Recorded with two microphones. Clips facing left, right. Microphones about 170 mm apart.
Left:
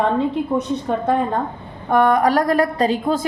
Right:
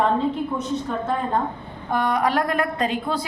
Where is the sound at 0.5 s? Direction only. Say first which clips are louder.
Left 5 dB; 65° left (ahead or behind).